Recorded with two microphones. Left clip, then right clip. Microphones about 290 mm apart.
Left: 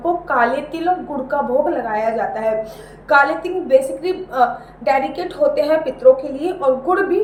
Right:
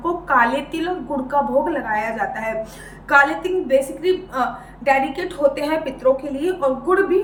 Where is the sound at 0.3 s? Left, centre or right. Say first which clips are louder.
Right 3 dB; centre.